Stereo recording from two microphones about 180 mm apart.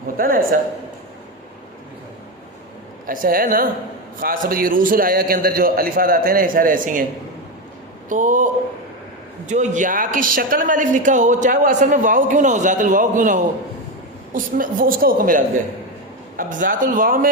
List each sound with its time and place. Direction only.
0.2 s a man's voice: 50° right (ahead or behind)
3.1 s speech: 50° right (ahead or behind)
8.1 s speech: 45° right (ahead or behind)
9.5 s speech: 45° right (ahead or behind)